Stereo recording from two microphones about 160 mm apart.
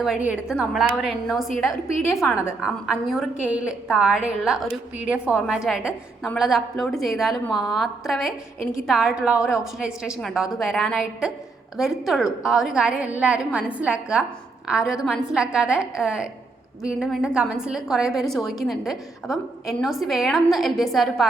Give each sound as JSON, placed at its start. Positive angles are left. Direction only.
{"t": 0.0, "sound": "a woman's voice", "side_deg": -5}